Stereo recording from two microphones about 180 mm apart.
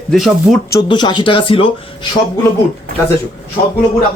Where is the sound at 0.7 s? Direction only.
25° left (ahead or behind).